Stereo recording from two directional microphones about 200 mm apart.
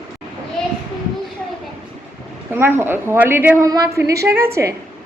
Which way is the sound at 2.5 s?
10° right (ahead or behind).